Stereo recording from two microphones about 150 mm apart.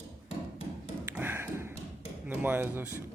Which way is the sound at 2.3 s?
15° right (ahead or behind).